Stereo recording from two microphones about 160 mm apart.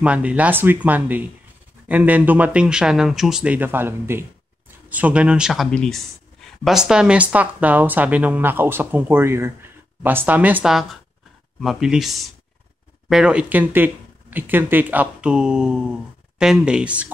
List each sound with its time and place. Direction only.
0.0 s speech: 10° right (ahead or behind)